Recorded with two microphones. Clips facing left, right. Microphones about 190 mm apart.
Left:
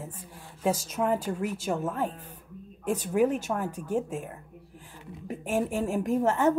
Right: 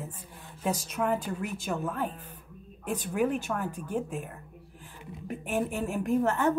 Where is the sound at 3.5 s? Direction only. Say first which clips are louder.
Left 3 dB; 25° left (ahead or behind).